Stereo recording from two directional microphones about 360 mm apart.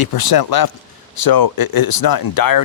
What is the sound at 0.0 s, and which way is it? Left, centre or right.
Speech, left.